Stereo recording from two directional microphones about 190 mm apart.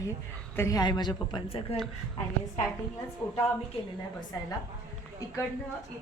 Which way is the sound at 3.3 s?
10° left (ahead or behind).